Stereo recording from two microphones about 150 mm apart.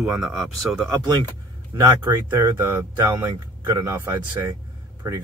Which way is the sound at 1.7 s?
20° right (ahead or behind).